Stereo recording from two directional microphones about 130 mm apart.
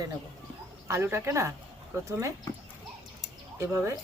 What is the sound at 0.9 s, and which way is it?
Speech, 20° right (ahead or behind).